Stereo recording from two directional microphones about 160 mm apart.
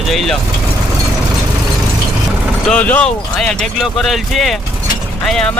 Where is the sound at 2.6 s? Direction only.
10° left (ahead or behind).